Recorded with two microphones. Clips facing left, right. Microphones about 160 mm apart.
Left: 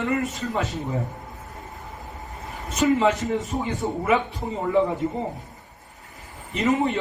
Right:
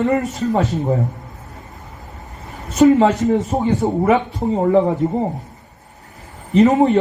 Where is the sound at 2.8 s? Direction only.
40° right (ahead or behind).